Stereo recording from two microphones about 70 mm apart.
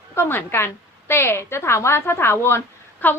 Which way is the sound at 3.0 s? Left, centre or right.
Left.